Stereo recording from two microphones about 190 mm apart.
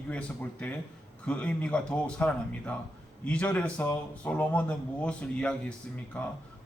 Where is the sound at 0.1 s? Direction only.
5° left (ahead or behind).